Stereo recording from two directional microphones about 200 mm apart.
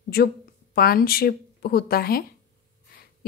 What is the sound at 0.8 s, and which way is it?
A woman's voice, 50° left (ahead or behind).